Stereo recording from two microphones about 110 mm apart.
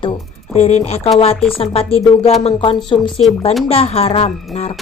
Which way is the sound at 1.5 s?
60° left (ahead or behind).